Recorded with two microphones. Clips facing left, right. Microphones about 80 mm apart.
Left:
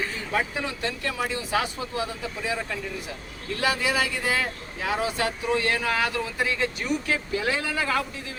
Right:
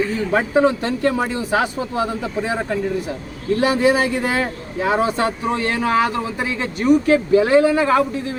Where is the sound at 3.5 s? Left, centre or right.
Right.